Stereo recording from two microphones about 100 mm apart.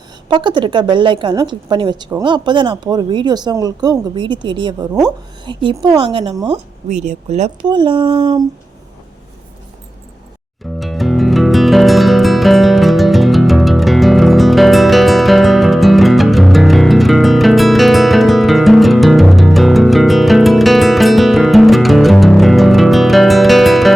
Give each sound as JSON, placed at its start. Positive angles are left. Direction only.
{"t": 0.3, "sound": "speech", "side_deg": -50}
{"t": 6.8, "sound": "speech", "side_deg": -90}
{"t": 7.7, "sound": "speech", "side_deg": -55}
{"t": 10.8, "sound": "music", "side_deg": 0}